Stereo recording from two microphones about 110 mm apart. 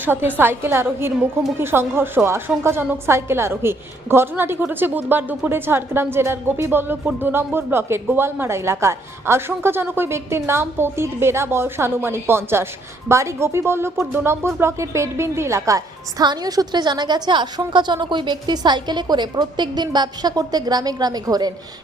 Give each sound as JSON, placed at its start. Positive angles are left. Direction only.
{"t": 0.0, "sound": "a woman's voice", "side_deg": -20}